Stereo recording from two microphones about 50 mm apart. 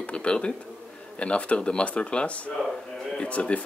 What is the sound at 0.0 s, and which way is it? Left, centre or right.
Speech, left.